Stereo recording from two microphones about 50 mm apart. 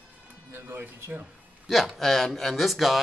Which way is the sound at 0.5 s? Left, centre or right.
Right.